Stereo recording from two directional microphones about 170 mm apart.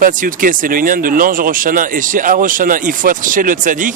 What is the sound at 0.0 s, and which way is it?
Speech, 50° right (ahead or behind).